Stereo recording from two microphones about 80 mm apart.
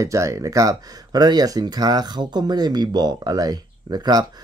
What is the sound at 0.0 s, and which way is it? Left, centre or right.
Speech, right.